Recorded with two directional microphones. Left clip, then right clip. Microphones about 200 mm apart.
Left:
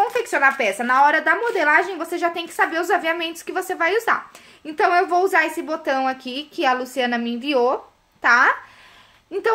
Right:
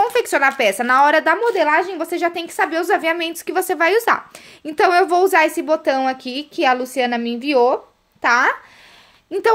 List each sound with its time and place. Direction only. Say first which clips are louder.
0.0 s speech: right 2 dB; 40° right (ahead or behind)